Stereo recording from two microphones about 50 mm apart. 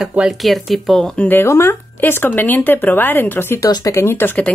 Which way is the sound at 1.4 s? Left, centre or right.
Left.